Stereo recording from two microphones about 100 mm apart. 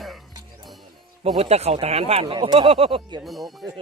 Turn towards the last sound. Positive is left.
turn(degrees=0)  # may be behind; listen again after turning